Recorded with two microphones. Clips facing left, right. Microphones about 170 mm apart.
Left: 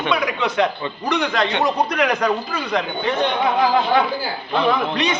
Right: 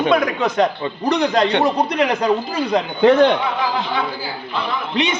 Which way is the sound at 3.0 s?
90° right.